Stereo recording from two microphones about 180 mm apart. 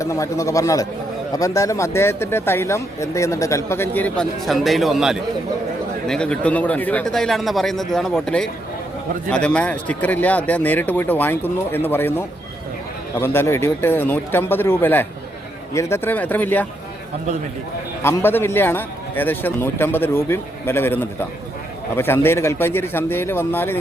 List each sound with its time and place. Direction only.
0.0 s speech: 15° left (ahead or behind)
18.0 s speech: 15° left (ahead or behind)